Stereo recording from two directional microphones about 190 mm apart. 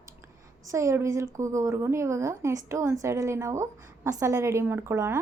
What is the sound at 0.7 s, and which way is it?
A woman's voice, 15° right (ahead or behind).